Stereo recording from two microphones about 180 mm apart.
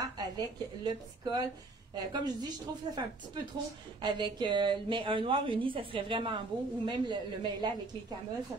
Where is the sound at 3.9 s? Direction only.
25° right (ahead or behind).